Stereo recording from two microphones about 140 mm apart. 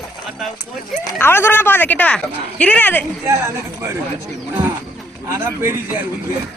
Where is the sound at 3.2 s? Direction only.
20° right (ahead or behind).